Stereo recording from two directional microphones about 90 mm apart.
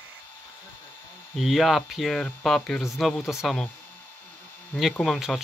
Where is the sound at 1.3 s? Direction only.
Centre (ahead or behind).